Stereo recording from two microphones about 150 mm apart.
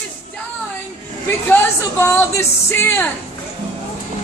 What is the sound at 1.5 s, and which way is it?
Speech, 15° left (ahead or behind).